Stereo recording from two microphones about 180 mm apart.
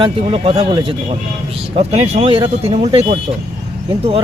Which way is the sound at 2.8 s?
20° right (ahead or behind).